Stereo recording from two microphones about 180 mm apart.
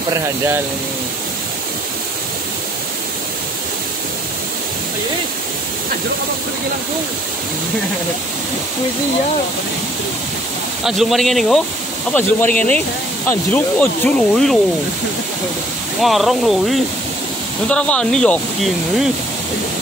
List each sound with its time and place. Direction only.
10.8 s speech: centre (ahead or behind)
16.0 s speech: centre (ahead or behind)